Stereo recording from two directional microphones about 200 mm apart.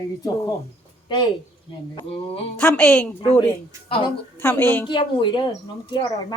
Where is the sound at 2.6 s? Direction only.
5° left (ahead or behind).